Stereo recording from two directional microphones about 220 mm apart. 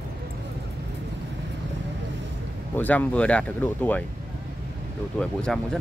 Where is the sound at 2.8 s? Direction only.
5° left (ahead or behind).